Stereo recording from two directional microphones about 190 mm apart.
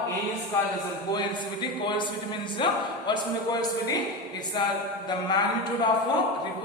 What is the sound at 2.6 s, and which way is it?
Speech, 25° left (ahead or behind).